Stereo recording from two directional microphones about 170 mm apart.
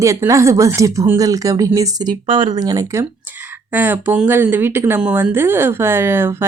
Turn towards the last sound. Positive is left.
turn(degrees=-15)  # may be behind; listen again after turning